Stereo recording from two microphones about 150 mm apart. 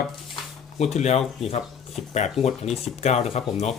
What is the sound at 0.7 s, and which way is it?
Speech, 50° left (ahead or behind).